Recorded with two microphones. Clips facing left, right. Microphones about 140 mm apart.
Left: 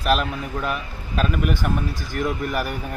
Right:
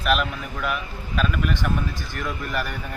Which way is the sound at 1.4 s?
10° left (ahead or behind).